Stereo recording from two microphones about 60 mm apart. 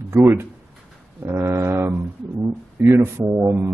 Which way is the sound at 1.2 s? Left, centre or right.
Right.